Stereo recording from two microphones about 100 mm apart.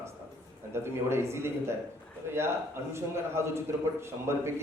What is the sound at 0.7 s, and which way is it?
A man's voice, 25° right (ahead or behind).